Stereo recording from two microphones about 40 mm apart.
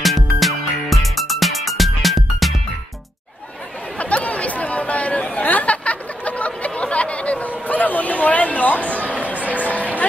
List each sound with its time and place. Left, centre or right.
0.0 s music: centre
4.0 s chatter: left
5.4 s a sound: left
7.4 s chatter: left
9.0 s music: right
9.5 s music: left